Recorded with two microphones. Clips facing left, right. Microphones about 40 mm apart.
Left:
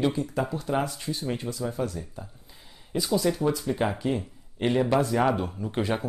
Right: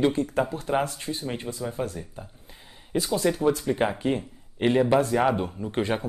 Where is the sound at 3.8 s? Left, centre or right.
Right.